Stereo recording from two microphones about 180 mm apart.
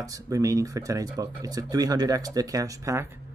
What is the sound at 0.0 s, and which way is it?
Speech, 20° right (ahead or behind).